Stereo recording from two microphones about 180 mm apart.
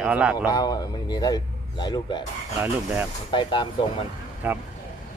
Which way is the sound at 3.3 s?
25° left (ahead or behind).